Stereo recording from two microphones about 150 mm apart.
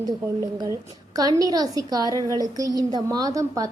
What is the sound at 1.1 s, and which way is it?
A woman's voice, 25° right (ahead or behind).